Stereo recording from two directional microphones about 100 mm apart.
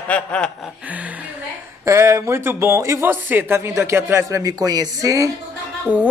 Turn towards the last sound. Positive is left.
turn(degrees=-15)  # may be behind; listen again after turning